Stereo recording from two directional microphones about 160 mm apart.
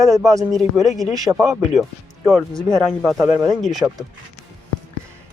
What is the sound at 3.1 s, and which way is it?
Speech, 20° right (ahead or behind).